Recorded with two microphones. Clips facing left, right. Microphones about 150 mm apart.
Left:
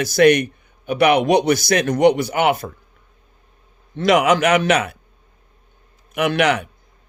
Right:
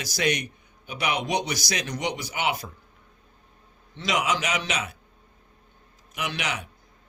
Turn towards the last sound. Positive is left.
turn(degrees=60)  # may be behind; listen again after turning